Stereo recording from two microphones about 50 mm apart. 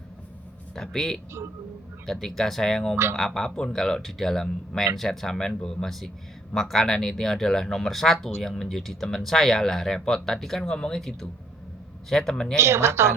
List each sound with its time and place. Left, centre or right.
0.8 s speech: centre
2.9 s speech: right
3.2 s speech: centre
12.5 s speech: right